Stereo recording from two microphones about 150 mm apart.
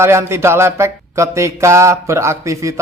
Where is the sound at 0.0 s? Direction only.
15° right (ahead or behind).